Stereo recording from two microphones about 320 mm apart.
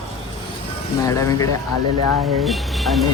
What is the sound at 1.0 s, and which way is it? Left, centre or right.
Speech, centre.